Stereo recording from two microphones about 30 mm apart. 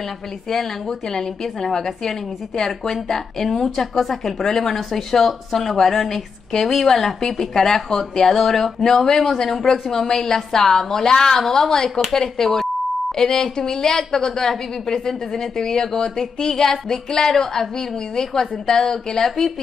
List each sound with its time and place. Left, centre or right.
0.8 s a woman's voice: centre